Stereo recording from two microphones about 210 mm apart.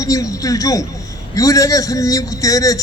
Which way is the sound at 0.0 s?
15° left (ahead or behind).